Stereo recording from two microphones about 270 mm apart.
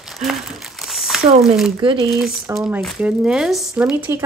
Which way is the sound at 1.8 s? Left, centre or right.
Centre.